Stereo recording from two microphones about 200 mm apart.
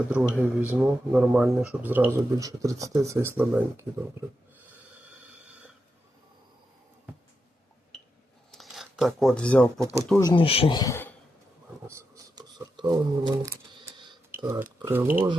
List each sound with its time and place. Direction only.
0.1 s speech: 5° right (ahead or behind)
8.5 s speech: centre (ahead or behind)
10.2 s speech: 20° left (ahead or behind)
11.9 s a sound: 15° right (ahead or behind)
14.3 s speech: 10° right (ahead or behind)